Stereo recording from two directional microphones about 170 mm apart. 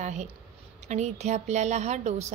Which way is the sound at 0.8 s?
40° right (ahead or behind).